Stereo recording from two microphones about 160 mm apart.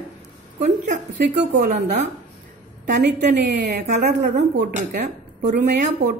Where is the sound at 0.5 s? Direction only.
45° right (ahead or behind).